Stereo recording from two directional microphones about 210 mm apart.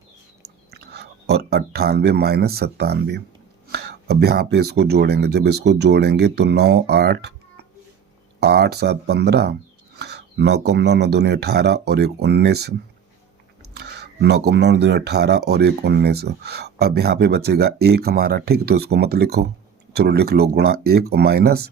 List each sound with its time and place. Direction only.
0.4 s speech: 50° right (ahead or behind)
13.7 s speech: 55° right (ahead or behind)